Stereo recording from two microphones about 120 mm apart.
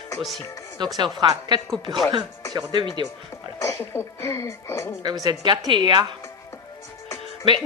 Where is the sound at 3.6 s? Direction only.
20° left (ahead or behind).